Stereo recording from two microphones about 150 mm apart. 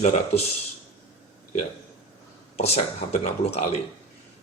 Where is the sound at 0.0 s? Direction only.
50° left (ahead or behind).